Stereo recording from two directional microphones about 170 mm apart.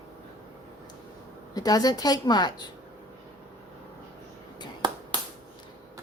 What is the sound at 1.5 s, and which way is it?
A woman's voice, 20° left (ahead or behind).